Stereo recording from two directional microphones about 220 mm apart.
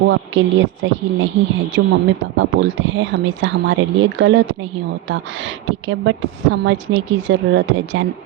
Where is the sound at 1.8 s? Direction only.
60° right (ahead or behind).